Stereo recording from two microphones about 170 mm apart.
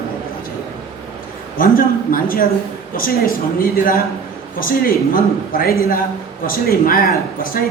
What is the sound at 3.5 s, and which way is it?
Speech, 55° left (ahead or behind).